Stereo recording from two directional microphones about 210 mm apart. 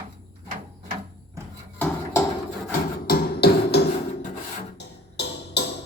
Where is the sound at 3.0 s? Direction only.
45° left (ahead or behind).